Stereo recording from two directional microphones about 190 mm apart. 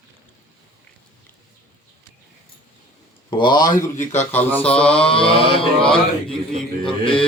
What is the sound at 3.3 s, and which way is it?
Mantra, 25° left (ahead or behind).